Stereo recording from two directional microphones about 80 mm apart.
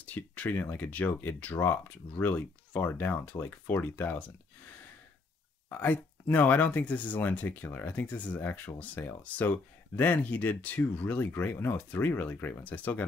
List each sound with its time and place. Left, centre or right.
0.0 s speech: left
5.7 s speech: left